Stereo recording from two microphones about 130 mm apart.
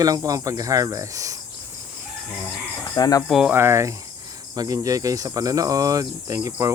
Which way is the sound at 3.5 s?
20° right (ahead or behind).